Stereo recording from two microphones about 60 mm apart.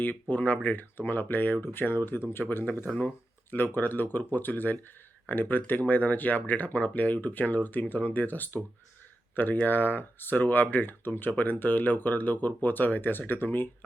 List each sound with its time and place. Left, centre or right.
0.0 s speech: left
2.8 s speech: left
3.5 s speech: left